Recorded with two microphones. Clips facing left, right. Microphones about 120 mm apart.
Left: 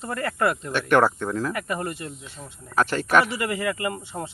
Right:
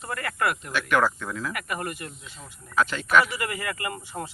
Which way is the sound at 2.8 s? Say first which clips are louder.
Left 2 dB; 45° left (ahead or behind).